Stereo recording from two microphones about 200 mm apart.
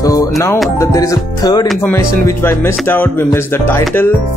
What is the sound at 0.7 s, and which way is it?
Speech, 15° left (ahead or behind).